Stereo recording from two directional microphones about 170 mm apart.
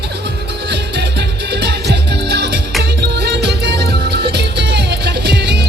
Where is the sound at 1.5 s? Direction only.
75° right (ahead or behind).